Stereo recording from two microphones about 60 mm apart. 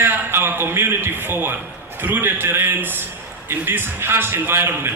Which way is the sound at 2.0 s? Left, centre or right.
Right.